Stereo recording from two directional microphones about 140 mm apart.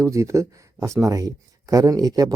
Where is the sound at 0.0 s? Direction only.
20° right (ahead or behind).